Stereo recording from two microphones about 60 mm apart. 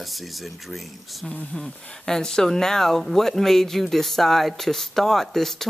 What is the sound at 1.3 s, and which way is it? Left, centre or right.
Speech, centre.